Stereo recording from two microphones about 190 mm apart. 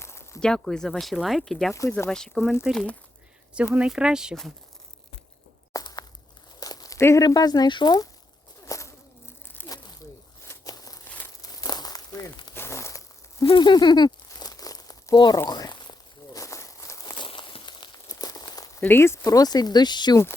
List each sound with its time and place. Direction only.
0.0 s speech: 15° left (ahead or behind)
1.7 s speech: 15° left (ahead or behind); by 4.5 s centre (ahead or behind)
5.7 s a sound: 20° left (ahead or behind)
6.6 s speech: 20° left (ahead or behind)
8.6 s a sound: 15° left (ahead or behind)
11.4 s crumpling: 20° left (ahead or behind)
13.4 s crumpling: 25° left (ahead or behind)